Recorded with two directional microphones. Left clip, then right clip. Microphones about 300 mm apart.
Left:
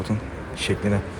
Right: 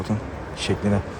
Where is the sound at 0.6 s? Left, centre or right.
Right.